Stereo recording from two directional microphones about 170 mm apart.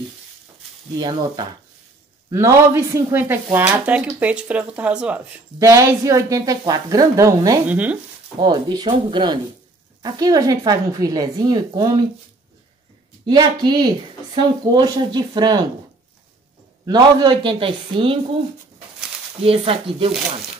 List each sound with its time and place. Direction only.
0.9 s speech: 25° right (ahead or behind); by 5.2 s 5° right (ahead or behind)
5.6 s speech: 15° right (ahead or behind)
8.4 s speech: 25° right (ahead or behind)
13.2 s speech: 25° right (ahead or behind)
16.8 s speech: 25° right (ahead or behind)
19.4 s speech: 35° right (ahead or behind)